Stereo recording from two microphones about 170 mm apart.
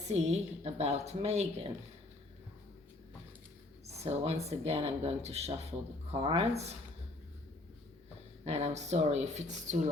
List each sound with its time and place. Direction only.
0.1 s a woman's voice: 40° right (ahead or behind)
4.0 s a woman's voice: 40° right (ahead or behind)
8.4 s a woman's voice: 40° right (ahead or behind)